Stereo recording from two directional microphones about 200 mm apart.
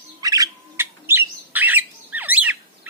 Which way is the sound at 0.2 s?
20° right (ahead or behind).